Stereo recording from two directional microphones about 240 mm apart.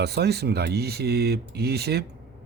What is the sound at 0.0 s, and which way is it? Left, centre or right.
Speech, right.